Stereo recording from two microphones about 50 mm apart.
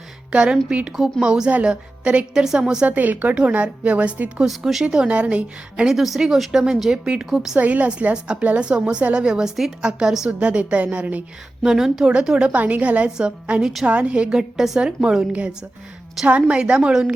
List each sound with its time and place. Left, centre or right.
0.3 s a woman's voice: centre
2.8 s a woman's voice: right
4.4 s a woman's voice: centre
5.0 s a woman's voice: right
5.9 s a woman's voice: centre
7.6 s a woman's voice: right; by 10.2 s centre
10.2 s a woman's voice: right
11.6 s a woman's voice: centre
12.5 s a woman's voice: right
13.1 s a woman's voice: centre
15.3 s a woman's voice: right